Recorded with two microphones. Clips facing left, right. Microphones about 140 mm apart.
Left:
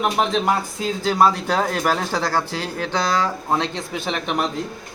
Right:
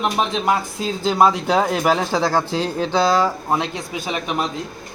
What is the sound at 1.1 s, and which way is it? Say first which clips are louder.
Speech: right 2 dB; 15° right (ahead or behind).